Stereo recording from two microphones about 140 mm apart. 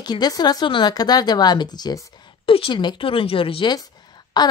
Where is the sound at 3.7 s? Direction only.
30° left (ahead or behind).